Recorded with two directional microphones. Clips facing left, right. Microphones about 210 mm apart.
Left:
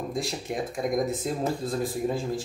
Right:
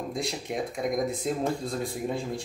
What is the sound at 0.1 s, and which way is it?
Speech, centre (ahead or behind).